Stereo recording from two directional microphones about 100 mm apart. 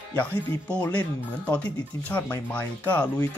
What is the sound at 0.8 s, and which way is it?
Speech, 15° left (ahead or behind).